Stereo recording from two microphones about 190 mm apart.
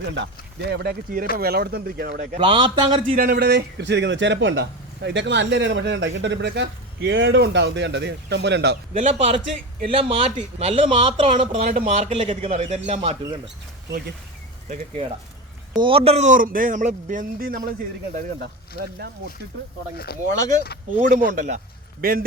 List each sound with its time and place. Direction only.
0.0 s speech: 70° right (ahead or behind); by 2.4 s 40° right (ahead or behind)
2.4 s a man's voice: 25° right (ahead or behind)
3.2 s speech: 50° right (ahead or behind)
8.9 s a man's voice: 35° right (ahead or behind)
15.7 s speech: 25° right (ahead or behind); by 19.3 s 60° right (ahead or behind)
20.1 s speech: 55° left (ahead or behind)
21.0 s speech: 45° right (ahead or behind)